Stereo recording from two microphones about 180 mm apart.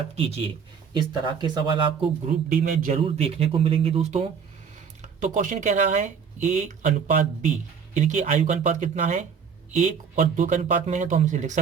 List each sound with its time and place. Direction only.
0.2 s speech: 35° right (ahead or behind)
0.9 s speech: 25° right (ahead or behind)
2.2 s speech: 50° right (ahead or behind)
3.0 s speech: 35° right (ahead or behind)